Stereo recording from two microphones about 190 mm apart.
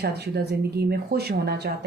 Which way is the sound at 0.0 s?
60° right (ahead or behind).